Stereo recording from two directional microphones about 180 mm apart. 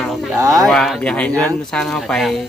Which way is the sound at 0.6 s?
Centre (ahead or behind).